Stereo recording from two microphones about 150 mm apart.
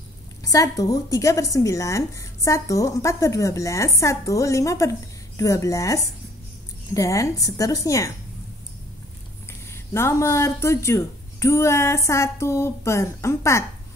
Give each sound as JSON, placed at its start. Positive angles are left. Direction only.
{"t": 0.4, "sound": "speech", "side_deg": 20}
{"t": 9.7, "sound": "speech", "side_deg": 15}